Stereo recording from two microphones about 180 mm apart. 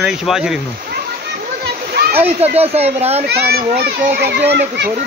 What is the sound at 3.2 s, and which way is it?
A child's voice, 65° right (ahead or behind).